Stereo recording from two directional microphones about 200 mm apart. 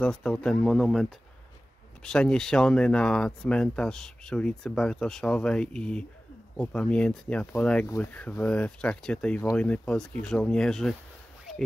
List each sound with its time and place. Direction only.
0.0 s speech: 5° left (ahead or behind)
2.0 s speech: 5° left (ahead or behind)